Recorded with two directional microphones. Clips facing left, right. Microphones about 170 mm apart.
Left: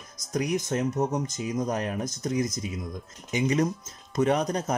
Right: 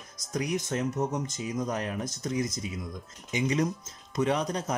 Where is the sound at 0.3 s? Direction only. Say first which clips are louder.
Left 3 dB; 40° left (ahead or behind).